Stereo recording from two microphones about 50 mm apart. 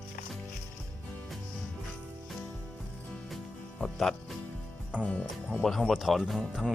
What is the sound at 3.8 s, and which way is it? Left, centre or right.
Music, centre.